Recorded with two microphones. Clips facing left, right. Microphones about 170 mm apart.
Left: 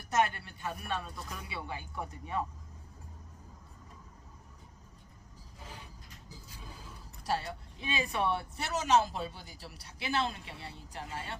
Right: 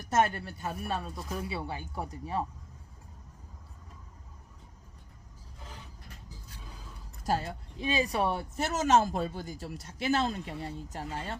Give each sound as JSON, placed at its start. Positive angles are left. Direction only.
{"t": 0.0, "sound": "speech", "side_deg": -45}
{"t": 7.3, "sound": "speech", "side_deg": -45}